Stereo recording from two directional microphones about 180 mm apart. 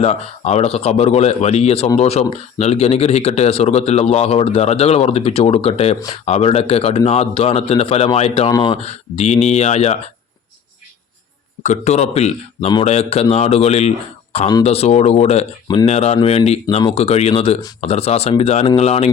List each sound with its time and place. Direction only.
0.0 s speech: 35° left (ahead or behind)
8.4 s speech: 25° left (ahead or behind)
11.6 s speech: 40° left (ahead or behind)
15.6 s speech: 20° left (ahead or behind)
15.9 s speech: 35° left (ahead or behind)